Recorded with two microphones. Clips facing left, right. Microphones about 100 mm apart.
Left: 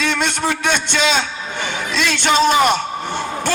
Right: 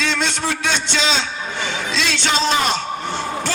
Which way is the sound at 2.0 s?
55° left (ahead or behind).